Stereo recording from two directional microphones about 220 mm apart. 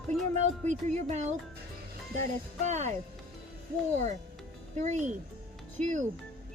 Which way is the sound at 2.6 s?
30° right (ahead or behind).